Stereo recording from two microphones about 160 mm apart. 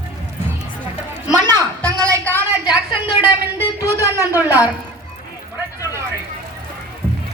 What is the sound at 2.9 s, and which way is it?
Speech, 35° left (ahead or behind).